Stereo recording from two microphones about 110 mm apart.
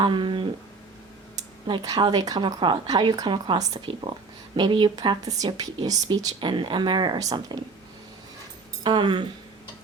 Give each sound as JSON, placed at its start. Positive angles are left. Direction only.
{"t": 0.0, "sound": "speech", "side_deg": -45}
{"t": 1.6, "sound": "speech", "side_deg": -40}
{"t": 8.8, "sound": "speech", "side_deg": -40}